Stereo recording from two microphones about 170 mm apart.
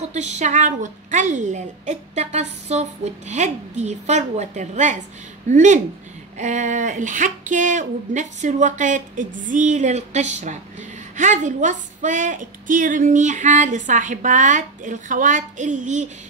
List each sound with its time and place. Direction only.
0.1 s speech: 40° right (ahead or behind)